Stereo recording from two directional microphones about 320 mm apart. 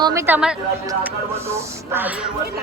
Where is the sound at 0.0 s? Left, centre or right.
Centre.